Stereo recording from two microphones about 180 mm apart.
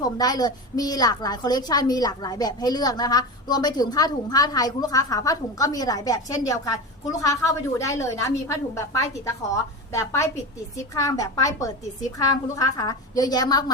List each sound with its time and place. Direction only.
0.0 s a woman's voice: 20° left (ahead or behind)